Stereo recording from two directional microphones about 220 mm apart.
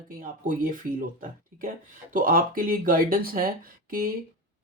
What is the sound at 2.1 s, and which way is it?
Speech, 40° right (ahead or behind).